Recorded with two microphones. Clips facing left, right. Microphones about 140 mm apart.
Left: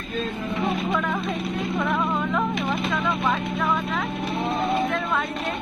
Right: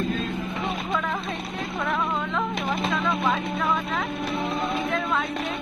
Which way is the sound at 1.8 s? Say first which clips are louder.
Left 1 dB; 5° left (ahead or behind).